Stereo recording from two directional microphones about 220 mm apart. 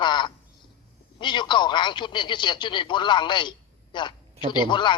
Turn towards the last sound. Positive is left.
turn(degrees=20)  # may be behind; listen again after turning